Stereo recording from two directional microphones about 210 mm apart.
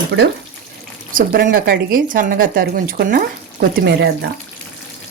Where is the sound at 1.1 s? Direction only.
40° right (ahead or behind).